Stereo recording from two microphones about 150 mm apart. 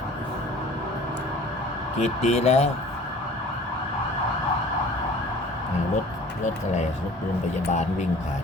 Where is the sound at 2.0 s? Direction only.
50° left (ahead or behind).